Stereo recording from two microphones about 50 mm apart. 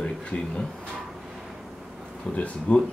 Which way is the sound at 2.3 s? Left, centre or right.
Left.